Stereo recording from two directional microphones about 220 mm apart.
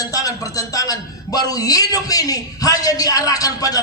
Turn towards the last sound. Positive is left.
turn(degrees=15)  # may be behind; listen again after turning